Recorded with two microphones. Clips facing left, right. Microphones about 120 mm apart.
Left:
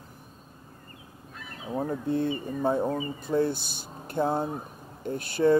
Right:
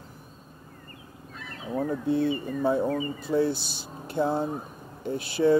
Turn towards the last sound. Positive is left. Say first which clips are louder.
# even
turn(degrees=45)  # may be behind; listen again after turning